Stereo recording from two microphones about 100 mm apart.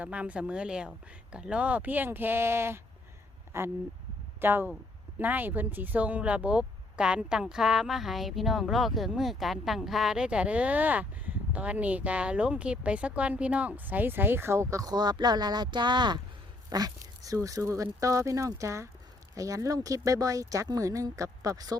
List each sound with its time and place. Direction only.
0.0 s speech: 15° right (ahead or behind); by 16.2 s 50° right (ahead or behind)
16.6 s speech: 40° right (ahead or behind)